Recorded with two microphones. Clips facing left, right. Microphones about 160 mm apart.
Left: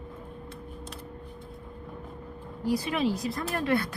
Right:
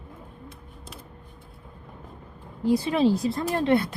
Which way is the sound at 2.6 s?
25° right (ahead or behind).